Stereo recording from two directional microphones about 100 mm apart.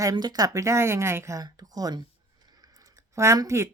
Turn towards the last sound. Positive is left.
turn(degrees=-30)  # may be behind; listen again after turning